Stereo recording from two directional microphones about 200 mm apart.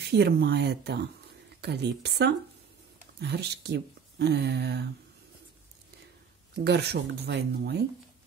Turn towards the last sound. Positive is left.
turn(degrees=-55)  # may be behind; listen again after turning